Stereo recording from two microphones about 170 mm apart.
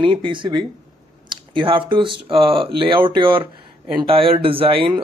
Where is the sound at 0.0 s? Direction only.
30° right (ahead or behind).